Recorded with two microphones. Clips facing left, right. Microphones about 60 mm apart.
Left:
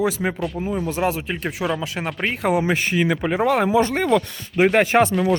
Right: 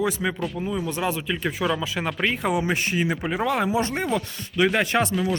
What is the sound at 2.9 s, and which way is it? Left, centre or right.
Speech, left.